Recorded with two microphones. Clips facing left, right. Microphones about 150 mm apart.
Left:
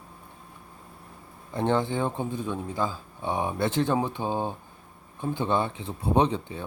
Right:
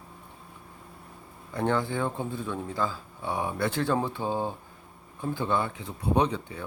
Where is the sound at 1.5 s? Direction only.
25° left (ahead or behind).